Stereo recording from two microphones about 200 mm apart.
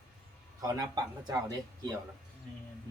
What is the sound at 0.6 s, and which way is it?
Speech, 20° right (ahead or behind).